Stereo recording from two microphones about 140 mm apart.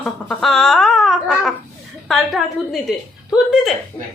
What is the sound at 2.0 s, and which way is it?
A woman's voice, centre (ahead or behind).